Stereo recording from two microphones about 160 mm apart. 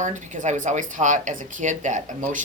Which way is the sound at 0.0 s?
50° right (ahead or behind).